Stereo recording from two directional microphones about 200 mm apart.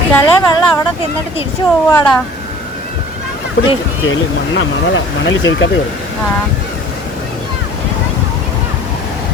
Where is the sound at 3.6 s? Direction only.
65° left (ahead or behind).